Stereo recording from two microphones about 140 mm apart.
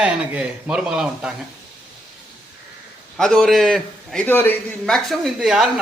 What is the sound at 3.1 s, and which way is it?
A man's voice, centre (ahead or behind).